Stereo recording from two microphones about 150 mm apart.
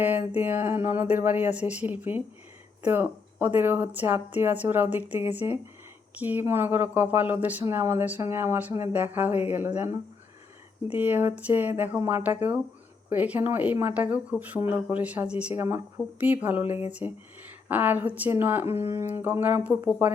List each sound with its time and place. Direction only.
0.3 s speech: 10° right (ahead or behind)